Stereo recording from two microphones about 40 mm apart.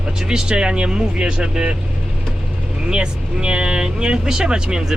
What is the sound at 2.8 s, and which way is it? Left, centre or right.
Speech, right.